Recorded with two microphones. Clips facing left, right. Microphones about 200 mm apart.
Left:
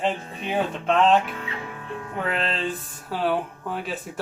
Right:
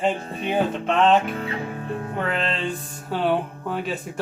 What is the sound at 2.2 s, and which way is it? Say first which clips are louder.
Speech: even; centre (ahead or behind).